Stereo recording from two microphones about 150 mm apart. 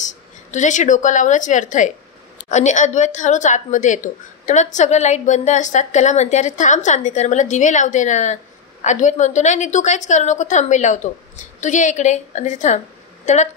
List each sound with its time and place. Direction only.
0.0 s a woman's voice: 55° left (ahead or behind)